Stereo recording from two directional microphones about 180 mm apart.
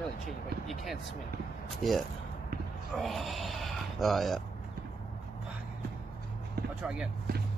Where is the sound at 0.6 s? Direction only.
Centre (ahead or behind).